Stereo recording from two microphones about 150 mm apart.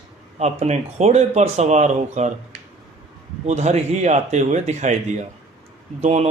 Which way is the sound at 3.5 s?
50° right (ahead or behind).